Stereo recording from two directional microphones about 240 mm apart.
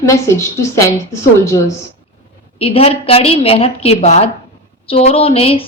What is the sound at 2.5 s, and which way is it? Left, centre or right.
A woman's voice, left.